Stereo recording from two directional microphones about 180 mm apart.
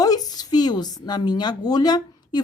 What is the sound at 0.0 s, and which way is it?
A woman's voice, 20° left (ahead or behind).